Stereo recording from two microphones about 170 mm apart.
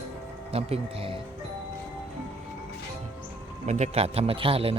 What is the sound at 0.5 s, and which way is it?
Speech, 35° right (ahead or behind).